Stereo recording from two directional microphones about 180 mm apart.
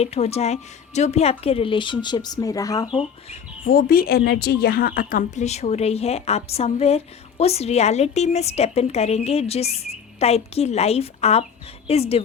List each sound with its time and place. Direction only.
0.0 s a woman's voice: 35° left (ahead or behind); by 2.9 s 20° left (ahead or behind)
2.9 s speech: 35° left (ahead or behind)
3.7 s a woman's voice: 55° left (ahead or behind); by 12.2 s 35° left (ahead or behind)